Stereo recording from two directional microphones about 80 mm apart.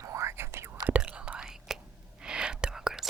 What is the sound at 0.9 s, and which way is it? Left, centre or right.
Whispering, centre.